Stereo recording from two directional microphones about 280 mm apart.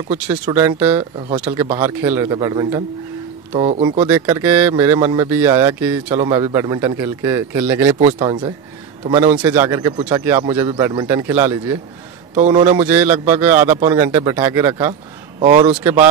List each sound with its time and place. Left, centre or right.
0.5 s speech: centre
4.1 s speech: centre
8.0 s speech: right
9.3 s speech: centre; by 15.8 s right